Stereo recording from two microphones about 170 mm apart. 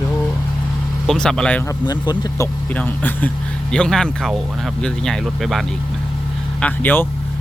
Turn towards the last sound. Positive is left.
turn(degrees=10)  # may be behind; listen again after turning